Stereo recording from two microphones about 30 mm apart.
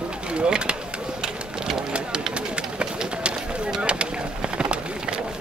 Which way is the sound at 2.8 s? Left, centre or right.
Right.